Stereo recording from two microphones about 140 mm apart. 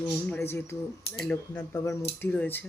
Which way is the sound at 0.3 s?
15° left (ahead or behind).